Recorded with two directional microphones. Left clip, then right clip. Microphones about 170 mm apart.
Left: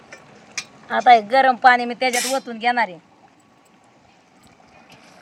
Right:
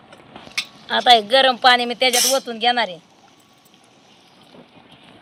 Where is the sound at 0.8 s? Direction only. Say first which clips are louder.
Left 1 dB; centre (ahead or behind).